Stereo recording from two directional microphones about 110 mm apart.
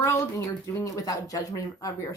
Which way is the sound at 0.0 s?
25° left (ahead or behind).